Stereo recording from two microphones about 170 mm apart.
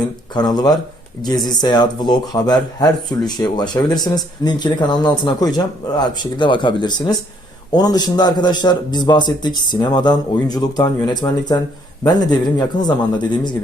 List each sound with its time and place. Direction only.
0.3 s a man's voice: 25° left (ahead or behind)